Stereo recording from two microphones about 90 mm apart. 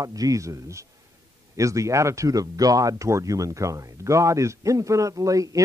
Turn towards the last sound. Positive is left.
turn(degrees=-40)  # may be behind; listen again after turning